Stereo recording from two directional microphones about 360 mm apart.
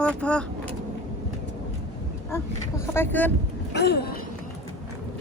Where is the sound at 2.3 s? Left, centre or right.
Centre.